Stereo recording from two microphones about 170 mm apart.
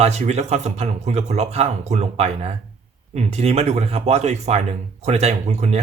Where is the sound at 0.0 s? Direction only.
40° right (ahead or behind).